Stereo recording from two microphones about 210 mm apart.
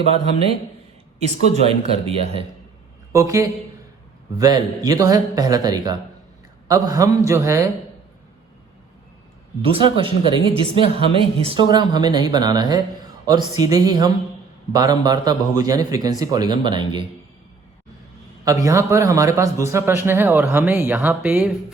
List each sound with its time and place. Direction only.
1.6 s speech: 30° right (ahead or behind)
3.1 s a man's voice: 15° right (ahead or behind)
9.6 s a man's voice: 25° right (ahead or behind)
18.4 s a man's voice: 15° right (ahead or behind)